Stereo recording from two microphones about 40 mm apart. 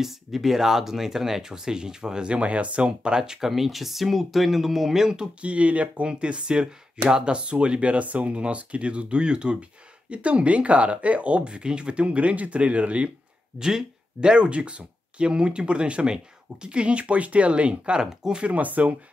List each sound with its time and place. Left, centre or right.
0.0 s speech: centre; by 3.2 s right
3.2 s speech: centre; by 13.1 s right
13.6 s speech: centre
18.0 s speech: centre
18.4 s speech: right